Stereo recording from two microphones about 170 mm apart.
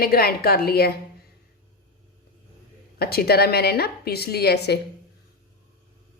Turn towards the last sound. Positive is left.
turn(degrees=75)  # may be behind; listen again after turning